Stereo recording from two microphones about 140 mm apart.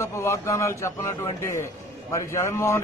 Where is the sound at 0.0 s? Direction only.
20° left (ahead or behind).